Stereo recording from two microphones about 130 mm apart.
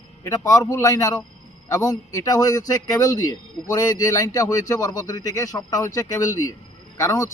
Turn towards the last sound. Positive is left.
turn(degrees=25)  # may be behind; listen again after turning